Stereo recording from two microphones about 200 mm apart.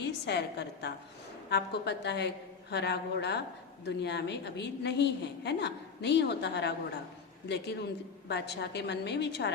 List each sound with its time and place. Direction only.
0.0 s a woman's voice: 60° left (ahead or behind)